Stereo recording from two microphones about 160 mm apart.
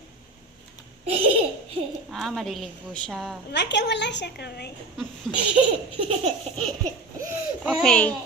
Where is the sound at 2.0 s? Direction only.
Centre (ahead or behind).